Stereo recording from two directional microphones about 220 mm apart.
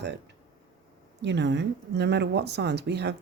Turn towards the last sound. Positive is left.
turn(degrees=-50)  # may be behind; listen again after turning